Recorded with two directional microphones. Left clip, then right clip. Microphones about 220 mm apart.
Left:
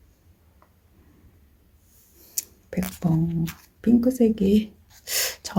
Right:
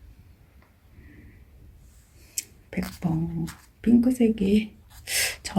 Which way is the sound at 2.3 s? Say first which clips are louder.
Left 2 dB; 20° left (ahead or behind).